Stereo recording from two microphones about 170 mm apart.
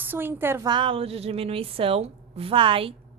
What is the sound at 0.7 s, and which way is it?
A woman's voice, 30° right (ahead or behind).